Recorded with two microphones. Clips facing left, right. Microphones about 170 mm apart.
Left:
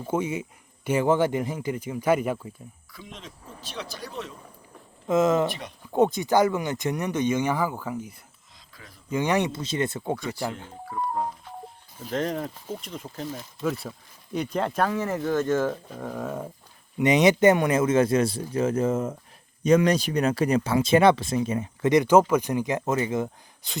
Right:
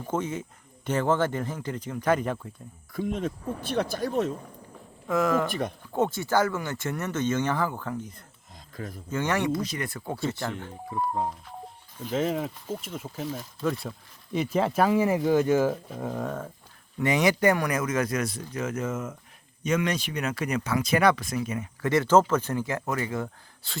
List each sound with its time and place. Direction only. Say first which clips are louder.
0.0 s speech: left 3 dB; 10° left (ahead or behind)
2.9 s speech: right 16 dB; 50° right (ahead or behind)
5.0 s speech: left 3 dB; 20° left (ahead or behind)
8.7 s speech: right 13 dB; 50° right (ahead or behind)
9.0 s speech: left 2 dB; 15° left (ahead or behind)
10.8 s speech: even; 20° right (ahead or behind)
11.9 s speech: right 1 dB; centre (ahead or behind)
17.0 s speech: left 4 dB; 20° left (ahead or behind)
21.8 s speech: left 3 dB; 15° left (ahead or behind)